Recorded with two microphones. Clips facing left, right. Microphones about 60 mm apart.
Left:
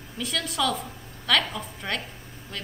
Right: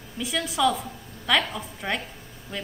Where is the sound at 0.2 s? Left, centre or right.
Centre.